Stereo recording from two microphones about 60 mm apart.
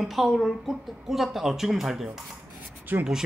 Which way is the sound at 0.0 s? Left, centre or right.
Centre.